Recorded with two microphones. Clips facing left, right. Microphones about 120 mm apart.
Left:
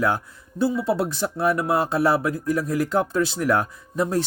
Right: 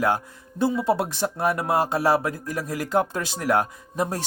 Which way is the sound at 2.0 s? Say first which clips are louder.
Left 1 dB; 40° right (ahead or behind).